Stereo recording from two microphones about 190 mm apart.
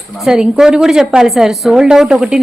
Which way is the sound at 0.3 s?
5° right (ahead or behind).